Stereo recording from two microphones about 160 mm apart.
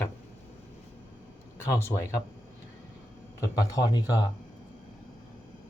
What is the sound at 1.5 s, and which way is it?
Speech, 15° left (ahead or behind).